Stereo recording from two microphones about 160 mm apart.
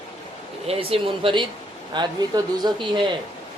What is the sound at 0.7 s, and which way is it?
Speech, 35° right (ahead or behind).